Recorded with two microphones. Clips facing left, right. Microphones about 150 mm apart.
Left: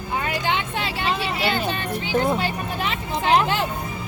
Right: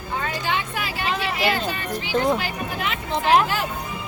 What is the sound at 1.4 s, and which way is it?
Speech, 25° left (ahead or behind).